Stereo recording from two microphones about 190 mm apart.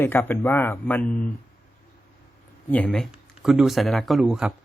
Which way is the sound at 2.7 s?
10° left (ahead or behind).